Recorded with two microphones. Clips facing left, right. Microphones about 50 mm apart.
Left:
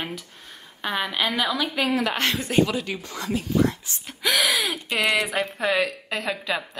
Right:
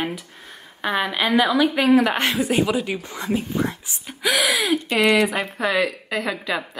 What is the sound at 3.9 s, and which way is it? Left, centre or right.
Speech, centre.